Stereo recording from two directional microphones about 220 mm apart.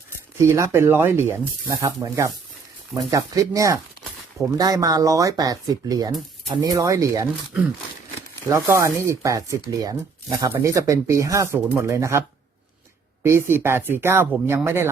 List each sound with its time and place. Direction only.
0.3 s speech: 15° right (ahead or behind)
13.2 s speech: 10° right (ahead or behind)